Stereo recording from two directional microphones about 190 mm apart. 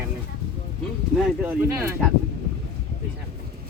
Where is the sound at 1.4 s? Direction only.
10° right (ahead or behind).